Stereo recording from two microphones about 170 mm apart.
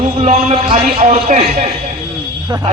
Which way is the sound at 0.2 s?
40° right (ahead or behind).